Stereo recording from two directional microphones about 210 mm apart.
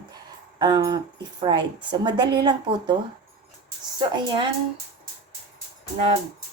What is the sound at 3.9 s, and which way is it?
Speech, 20° right (ahead or behind).